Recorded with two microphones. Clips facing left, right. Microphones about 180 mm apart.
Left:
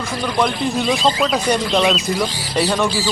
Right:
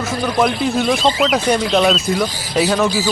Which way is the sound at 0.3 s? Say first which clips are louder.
Right 2 dB; 5° right (ahead or behind).